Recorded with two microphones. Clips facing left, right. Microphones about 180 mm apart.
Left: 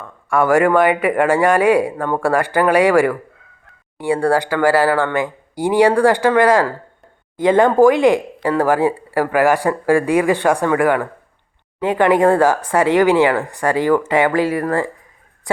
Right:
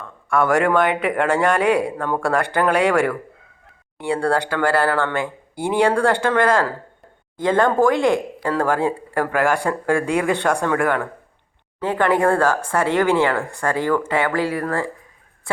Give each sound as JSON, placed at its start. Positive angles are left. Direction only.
{"t": 0.3, "sound": "speech", "side_deg": 10}
{"t": 4.1, "sound": "speech", "side_deg": 10}